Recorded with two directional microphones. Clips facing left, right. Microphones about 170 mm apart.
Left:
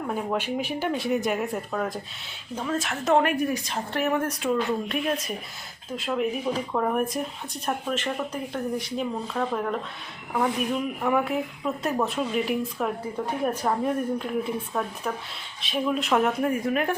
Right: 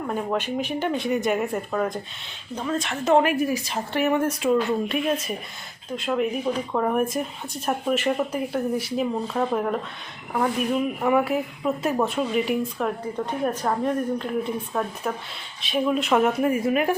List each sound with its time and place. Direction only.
0.1 s speech: 5° left (ahead or behind); by 9.7 s 15° right (ahead or behind)
10.3 s speech: centre (ahead or behind)